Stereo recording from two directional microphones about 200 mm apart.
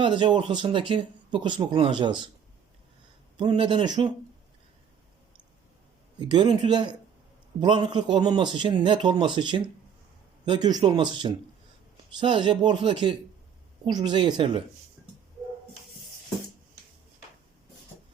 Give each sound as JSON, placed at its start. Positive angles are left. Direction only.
{"t": 0.0, "sound": "speech", "side_deg": -25}
{"t": 3.3, "sound": "speech", "side_deg": -25}
{"t": 6.1, "sound": "speech", "side_deg": -20}